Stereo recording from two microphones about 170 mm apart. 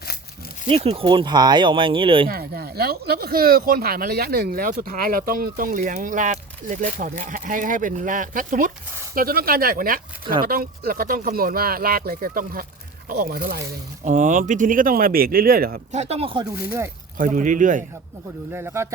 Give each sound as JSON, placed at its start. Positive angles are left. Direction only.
{"t": 0.7, "sound": "speech", "side_deg": -35}
{"t": 2.3, "sound": "speech", "side_deg": -65}
{"t": 15.9, "sound": "speech", "side_deg": -40}
{"t": 16.6, "sound": "speech", "side_deg": -15}
{"t": 17.2, "sound": "speech", "side_deg": -50}
{"t": 18.5, "sound": "speech", "side_deg": -15}